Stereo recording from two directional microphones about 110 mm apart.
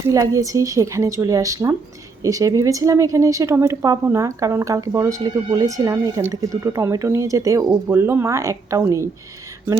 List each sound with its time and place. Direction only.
0.0 s a woman's voice: 30° right (ahead or behind)